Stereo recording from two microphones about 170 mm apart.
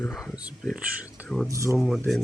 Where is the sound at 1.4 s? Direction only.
15° right (ahead or behind).